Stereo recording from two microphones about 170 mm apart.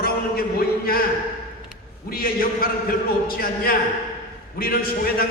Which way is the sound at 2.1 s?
60° left (ahead or behind).